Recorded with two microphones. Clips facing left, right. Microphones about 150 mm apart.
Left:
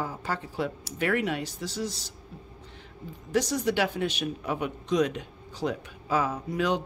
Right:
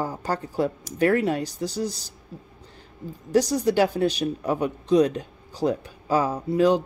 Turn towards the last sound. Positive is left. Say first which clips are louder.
# right 8 dB
turn(degrees=-35)  # may be behind; listen again after turning